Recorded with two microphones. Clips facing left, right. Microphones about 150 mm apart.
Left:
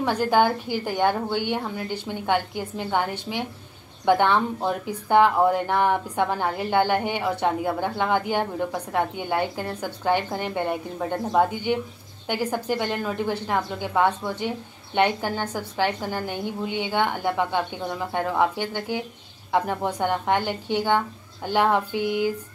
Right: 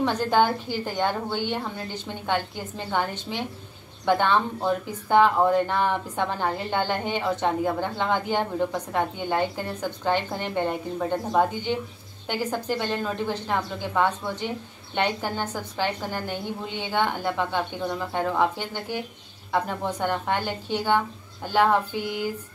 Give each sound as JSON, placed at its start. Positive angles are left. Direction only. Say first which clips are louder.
{"t": 0.0, "sound": "speech", "louder": "left 1 dB", "side_deg": 10}